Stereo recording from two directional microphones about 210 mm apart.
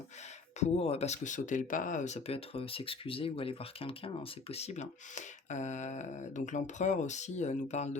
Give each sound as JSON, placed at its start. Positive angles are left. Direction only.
{"t": 0.6, "sound": "speech", "side_deg": 30}